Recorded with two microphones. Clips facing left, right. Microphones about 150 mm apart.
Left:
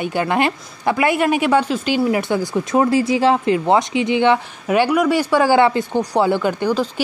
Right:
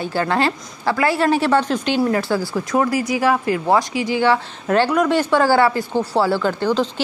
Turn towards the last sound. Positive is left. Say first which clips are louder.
# even
turn(degrees=10)  # may be behind; listen again after turning